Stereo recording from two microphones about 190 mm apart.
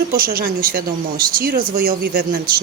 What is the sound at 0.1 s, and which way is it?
A woman's voice, 50° right (ahead or behind).